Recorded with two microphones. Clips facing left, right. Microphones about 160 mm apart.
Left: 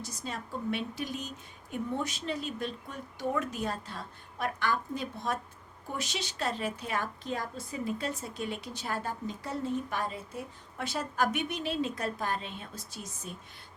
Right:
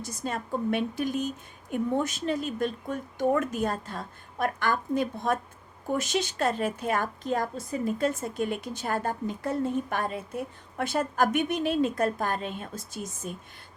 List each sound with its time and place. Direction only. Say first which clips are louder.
0.0 s a woman's voice: right 6 dB; 50° right (ahead or behind)